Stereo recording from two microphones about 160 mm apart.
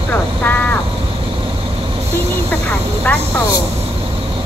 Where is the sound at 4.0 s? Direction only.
35° right (ahead or behind).